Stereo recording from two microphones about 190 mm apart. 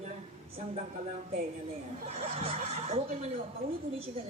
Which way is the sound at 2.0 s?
30° right (ahead or behind).